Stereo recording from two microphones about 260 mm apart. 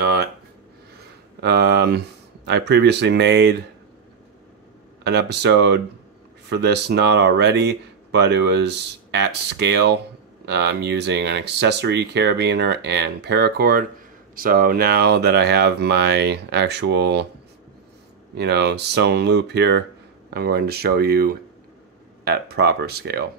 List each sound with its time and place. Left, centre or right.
0.0 s a sound: right
1.4 s speech: right
5.0 s speech: right
18.3 s speech: right